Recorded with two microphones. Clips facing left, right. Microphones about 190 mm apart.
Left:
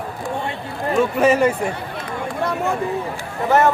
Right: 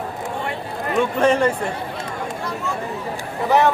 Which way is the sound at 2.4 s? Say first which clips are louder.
Left 10 dB; 60° left (ahead or behind).